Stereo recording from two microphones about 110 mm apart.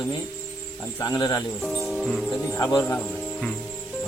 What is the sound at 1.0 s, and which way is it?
Speech, 35° left (ahead or behind).